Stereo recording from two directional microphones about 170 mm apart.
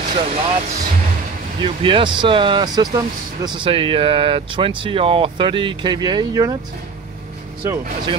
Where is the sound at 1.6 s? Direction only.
30° right (ahead or behind).